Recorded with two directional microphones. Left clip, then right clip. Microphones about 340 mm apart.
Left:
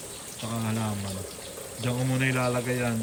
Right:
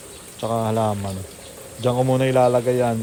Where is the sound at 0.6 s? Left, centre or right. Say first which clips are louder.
Right 10 dB; centre.